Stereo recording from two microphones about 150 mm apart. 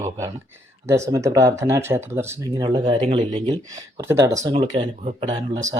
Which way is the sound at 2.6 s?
30° right (ahead or behind).